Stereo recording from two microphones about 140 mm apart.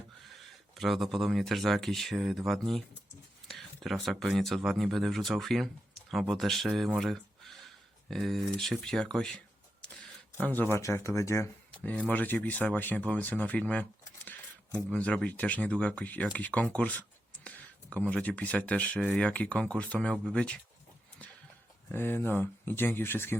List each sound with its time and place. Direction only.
0.8 s speech: centre (ahead or behind)
7.0 s a sound: centre (ahead or behind)
8.0 s speech: centre (ahead or behind)
10.4 s speech: 15° left (ahead or behind)
21.9 s speech: 15° left (ahead or behind)